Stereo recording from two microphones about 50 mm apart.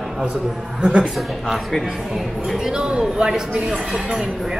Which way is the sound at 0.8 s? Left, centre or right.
Centre.